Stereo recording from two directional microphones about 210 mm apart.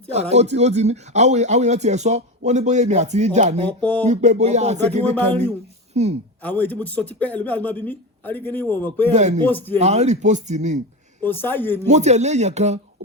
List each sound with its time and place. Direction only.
0.1 s speech: 30° right (ahead or behind)
3.7 s speech: 5° left (ahead or behind)
4.0 s speech: 35° right (ahead or behind)
5.3 s speech: 10° left (ahead or behind)
5.9 s a woman's voice: 30° right (ahead or behind)
6.4 s speech: 10° left (ahead or behind)
9.1 s speech: 35° right (ahead or behind)
9.4 s speech: 10° left (ahead or behind)
9.7 s speech: 30° right (ahead or behind)
11.2 s speech: 10° left (ahead or behind)
11.9 s speech: 35° right (ahead or behind)